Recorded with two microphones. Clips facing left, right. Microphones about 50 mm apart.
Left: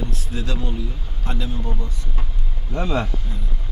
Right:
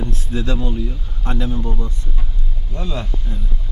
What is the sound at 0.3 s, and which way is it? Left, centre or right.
A man's voice, right.